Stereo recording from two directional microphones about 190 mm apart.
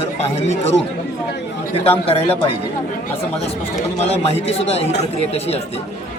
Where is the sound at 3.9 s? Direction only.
35° left (ahead or behind).